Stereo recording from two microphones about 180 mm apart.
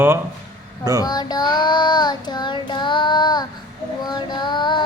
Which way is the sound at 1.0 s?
20° left (ahead or behind).